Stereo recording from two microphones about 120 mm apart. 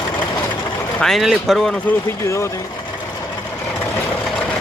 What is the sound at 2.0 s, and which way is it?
Speech, 25° left (ahead or behind).